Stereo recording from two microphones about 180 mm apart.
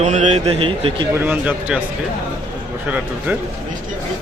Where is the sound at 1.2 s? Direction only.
10° right (ahead or behind).